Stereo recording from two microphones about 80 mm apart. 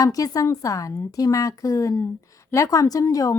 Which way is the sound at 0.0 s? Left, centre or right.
Left.